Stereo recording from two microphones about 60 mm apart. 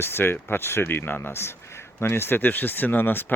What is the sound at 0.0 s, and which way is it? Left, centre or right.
Speech, left.